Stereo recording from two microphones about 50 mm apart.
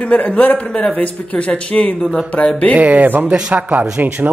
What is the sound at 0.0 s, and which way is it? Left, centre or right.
Speech, left.